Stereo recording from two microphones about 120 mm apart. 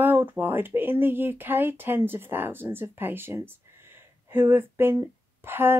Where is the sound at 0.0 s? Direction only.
15° right (ahead or behind).